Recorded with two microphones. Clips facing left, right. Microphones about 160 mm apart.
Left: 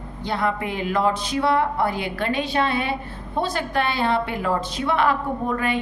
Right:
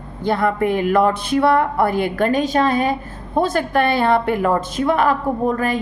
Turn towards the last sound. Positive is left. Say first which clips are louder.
# right 4 dB
turn(degrees=-40)  # may be behind; listen again after turning